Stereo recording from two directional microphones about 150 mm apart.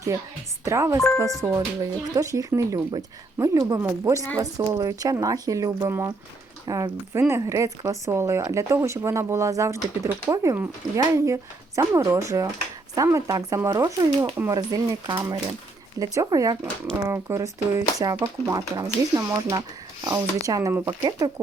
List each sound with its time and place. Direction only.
0.6 s speech: 20° right (ahead or behind)
0.9 s speech: 5° left (ahead or behind)
1.4 s speech: 20° right (ahead or behind)